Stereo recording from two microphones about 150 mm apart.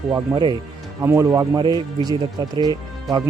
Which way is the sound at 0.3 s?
15° right (ahead or behind).